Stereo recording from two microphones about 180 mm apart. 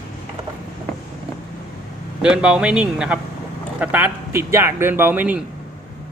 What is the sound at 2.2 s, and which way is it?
A man's voice, 5° right (ahead or behind).